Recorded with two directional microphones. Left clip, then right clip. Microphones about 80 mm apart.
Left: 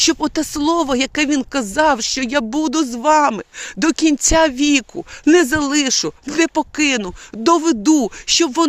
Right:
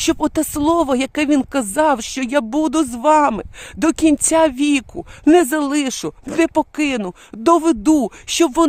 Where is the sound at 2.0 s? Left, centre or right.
Right.